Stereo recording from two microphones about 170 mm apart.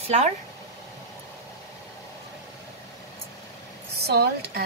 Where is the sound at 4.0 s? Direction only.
75° right (ahead or behind).